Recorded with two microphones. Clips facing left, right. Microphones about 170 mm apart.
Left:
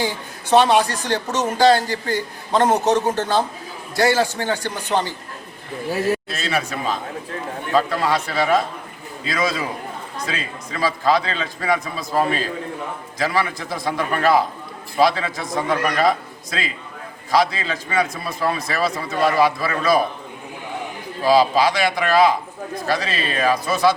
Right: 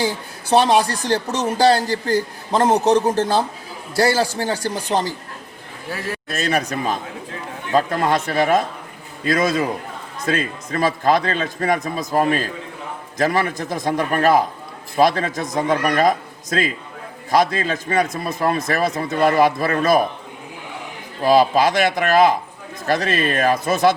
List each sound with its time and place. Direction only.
0.4 s speech: 35° right (ahead or behind)
6.2 s a man's voice: 45° right (ahead or behind)
21.2 s a man's voice: 50° right (ahead or behind)